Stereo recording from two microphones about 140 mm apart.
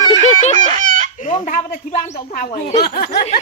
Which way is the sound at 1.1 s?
60° left (ahead or behind).